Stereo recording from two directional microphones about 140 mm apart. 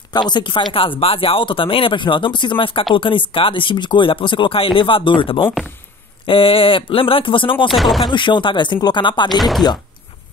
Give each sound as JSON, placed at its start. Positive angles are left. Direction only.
{"t": 0.1, "sound": "speech", "side_deg": 30}
{"t": 7.6, "sound": "speech", "side_deg": 0}
{"t": 8.1, "sound": "speech", "side_deg": 35}